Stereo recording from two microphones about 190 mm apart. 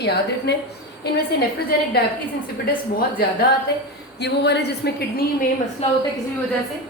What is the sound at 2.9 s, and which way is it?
Speech, 50° left (ahead or behind).